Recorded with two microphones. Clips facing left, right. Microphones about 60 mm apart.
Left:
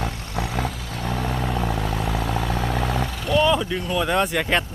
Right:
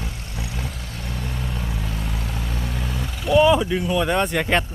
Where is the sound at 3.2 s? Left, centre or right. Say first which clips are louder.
Right 4 dB; centre.